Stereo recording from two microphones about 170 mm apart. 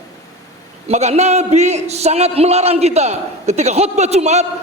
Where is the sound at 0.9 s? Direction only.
40° right (ahead or behind).